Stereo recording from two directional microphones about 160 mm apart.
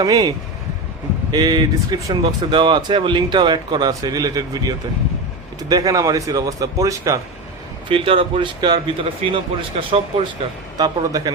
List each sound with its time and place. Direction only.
0.0 s speech: 25° right (ahead or behind)
7.9 s speech: 35° right (ahead or behind)